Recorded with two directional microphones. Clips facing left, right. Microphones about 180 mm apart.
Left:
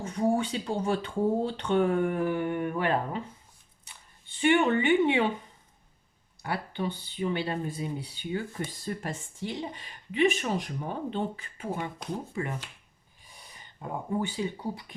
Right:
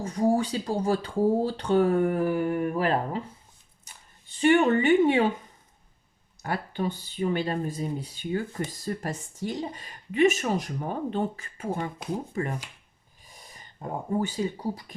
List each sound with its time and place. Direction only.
0.0 s speech: 35° right (ahead or behind)
6.4 s speech: 45° right (ahead or behind)
13.8 s speech: 45° right (ahead or behind)